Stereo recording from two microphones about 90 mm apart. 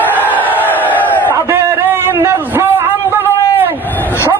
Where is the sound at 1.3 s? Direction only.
30° right (ahead or behind).